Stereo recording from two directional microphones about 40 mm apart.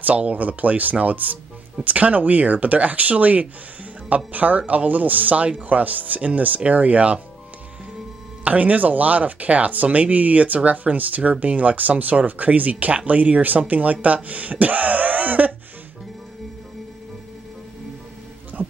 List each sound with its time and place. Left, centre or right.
0.0 s speech: right
8.5 s speech: right
18.5 s music: right